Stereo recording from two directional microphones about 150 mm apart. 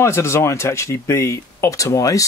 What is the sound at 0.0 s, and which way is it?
Speech, 15° left (ahead or behind).